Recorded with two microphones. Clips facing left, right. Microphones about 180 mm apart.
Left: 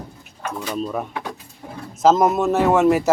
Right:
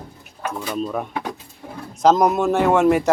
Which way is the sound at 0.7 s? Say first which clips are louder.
Even; centre (ahead or behind).